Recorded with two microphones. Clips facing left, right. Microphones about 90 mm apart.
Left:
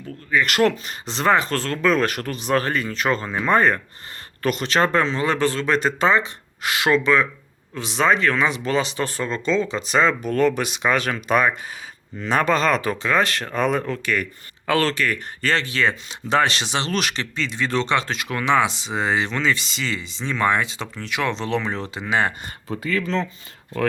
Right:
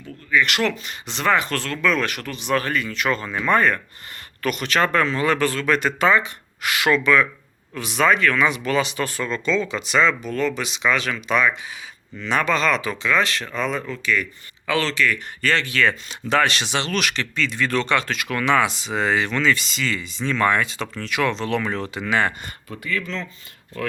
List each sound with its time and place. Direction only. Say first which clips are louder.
0.3 s speech: left 2 dB; 40° left (ahead or behind)